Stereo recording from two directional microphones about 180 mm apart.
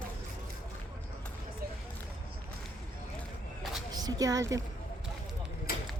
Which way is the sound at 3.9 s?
20° right (ahead or behind).